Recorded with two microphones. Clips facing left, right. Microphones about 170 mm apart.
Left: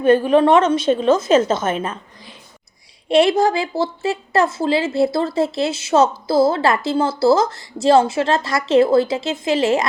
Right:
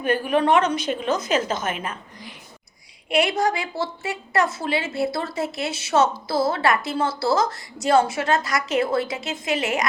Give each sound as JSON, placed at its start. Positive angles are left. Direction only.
{"t": 0.0, "sound": "speech", "side_deg": 25}
{"t": 3.2, "sound": "speech", "side_deg": 30}